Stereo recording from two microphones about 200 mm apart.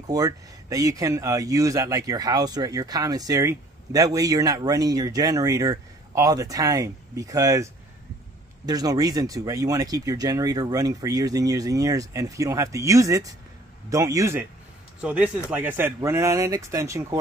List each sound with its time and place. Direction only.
0.0 s speech: 15° right (ahead or behind)